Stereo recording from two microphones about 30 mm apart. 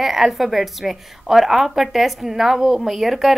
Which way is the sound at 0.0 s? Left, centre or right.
Centre.